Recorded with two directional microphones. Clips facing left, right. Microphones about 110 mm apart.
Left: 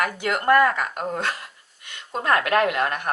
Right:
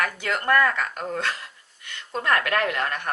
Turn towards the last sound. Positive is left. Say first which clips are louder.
# left 4 dB
turn(degrees=15)  # may be behind; listen again after turning